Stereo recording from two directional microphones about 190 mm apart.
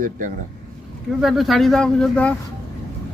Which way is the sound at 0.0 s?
45° right (ahead or behind).